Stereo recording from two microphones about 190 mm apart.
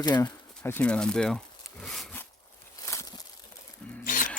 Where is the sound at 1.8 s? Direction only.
Centre (ahead or behind).